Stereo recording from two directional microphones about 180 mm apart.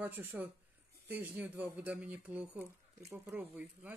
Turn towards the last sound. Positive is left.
turn(degrees=-10)  # may be behind; listen again after turning